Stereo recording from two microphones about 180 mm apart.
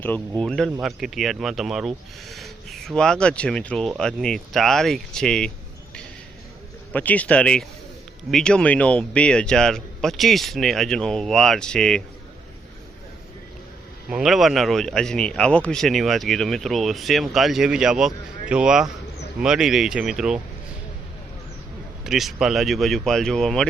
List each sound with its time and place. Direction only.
0.0 s speech: 5° left (ahead or behind)
6.9 s speech: 10° left (ahead or behind)
14.1 s speech: centre (ahead or behind)
22.0 s speech: centre (ahead or behind)